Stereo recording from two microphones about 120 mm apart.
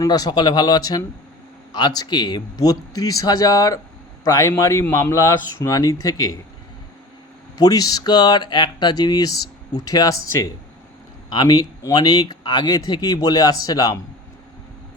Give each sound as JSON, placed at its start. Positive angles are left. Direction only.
{"t": 0.0, "sound": "speech", "side_deg": 35}
{"t": 7.6, "sound": "speech", "side_deg": 30}